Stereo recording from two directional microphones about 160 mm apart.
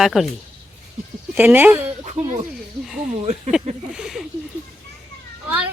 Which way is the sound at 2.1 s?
45° right (ahead or behind).